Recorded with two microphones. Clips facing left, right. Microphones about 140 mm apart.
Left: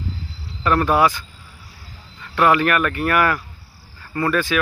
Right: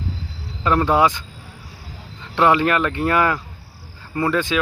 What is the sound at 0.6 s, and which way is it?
Speech, 20° right (ahead or behind).